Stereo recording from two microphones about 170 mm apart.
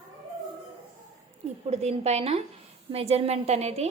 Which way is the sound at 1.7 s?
40° right (ahead or behind).